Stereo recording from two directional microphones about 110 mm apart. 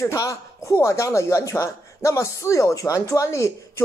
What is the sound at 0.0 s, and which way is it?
Speech, 30° left (ahead or behind).